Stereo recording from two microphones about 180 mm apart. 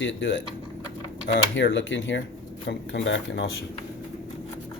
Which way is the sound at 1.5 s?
90° left.